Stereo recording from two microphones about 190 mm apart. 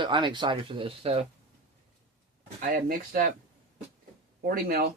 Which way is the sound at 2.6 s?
45° right (ahead or behind).